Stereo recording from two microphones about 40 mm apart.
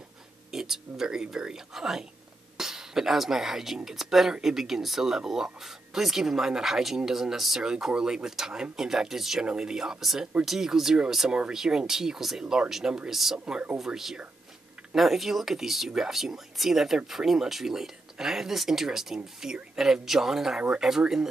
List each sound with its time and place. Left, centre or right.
0.5 s speech: centre
20.5 s speech: right